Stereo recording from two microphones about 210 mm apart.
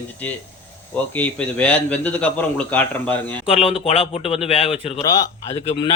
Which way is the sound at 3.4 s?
25° left (ahead or behind).